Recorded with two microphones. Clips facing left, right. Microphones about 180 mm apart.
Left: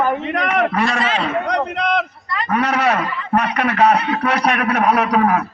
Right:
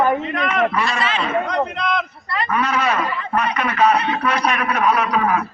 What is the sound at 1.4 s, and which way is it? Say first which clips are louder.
A man's voice: left 2 dB; 70° left (ahead or behind).